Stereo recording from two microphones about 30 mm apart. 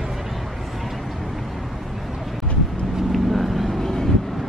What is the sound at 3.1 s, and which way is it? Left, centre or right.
Vehicle, centre.